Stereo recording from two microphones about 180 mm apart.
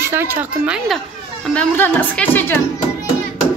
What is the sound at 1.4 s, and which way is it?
A woman's voice, 5° left (ahead or behind).